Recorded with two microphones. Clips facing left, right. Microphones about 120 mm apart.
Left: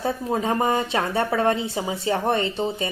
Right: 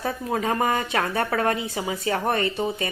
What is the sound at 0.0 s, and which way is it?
A woman's voice, 25° left (ahead or behind).